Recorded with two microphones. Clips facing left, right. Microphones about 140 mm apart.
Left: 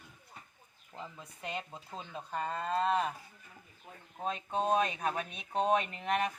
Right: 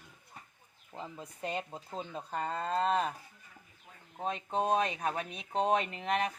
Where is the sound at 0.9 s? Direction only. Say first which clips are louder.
Right 2 dB; 20° right (ahead or behind).